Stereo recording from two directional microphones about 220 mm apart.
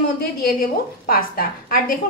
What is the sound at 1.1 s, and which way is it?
Speech, 40° left (ahead or behind).